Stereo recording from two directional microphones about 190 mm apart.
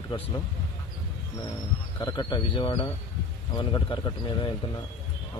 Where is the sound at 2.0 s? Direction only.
20° left (ahead or behind).